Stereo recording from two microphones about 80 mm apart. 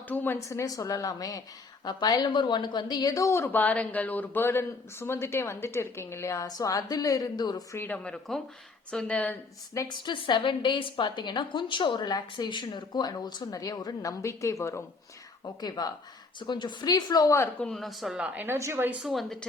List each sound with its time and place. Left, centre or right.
0.1 s speech: left
0.4 s a woman's voice: left
1.8 s speech: left
6.5 s a woman's voice: left
7.9 s speech: centre
9.9 s a woman's voice: left
13.5 s a woman's voice: left
15.4 s speech: left
16.4 s speech: left
17.6 s speech: centre
18.3 s a woman's voice: right
19.0 s speech: centre